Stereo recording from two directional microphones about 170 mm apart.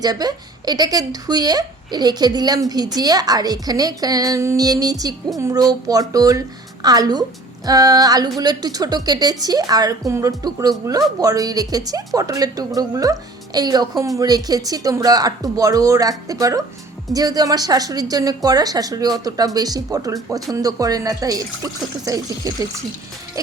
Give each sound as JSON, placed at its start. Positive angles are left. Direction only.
{"t": 0.0, "sound": "speech", "side_deg": -25}